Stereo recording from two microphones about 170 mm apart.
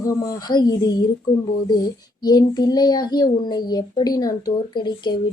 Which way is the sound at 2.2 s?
25° left (ahead or behind).